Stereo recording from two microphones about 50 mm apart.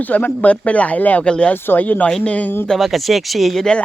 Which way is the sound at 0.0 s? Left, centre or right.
Left.